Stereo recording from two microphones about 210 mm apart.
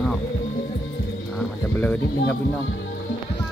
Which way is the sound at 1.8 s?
5° left (ahead or behind).